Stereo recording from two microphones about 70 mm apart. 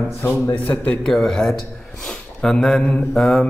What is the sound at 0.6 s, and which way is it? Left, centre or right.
Speech, centre.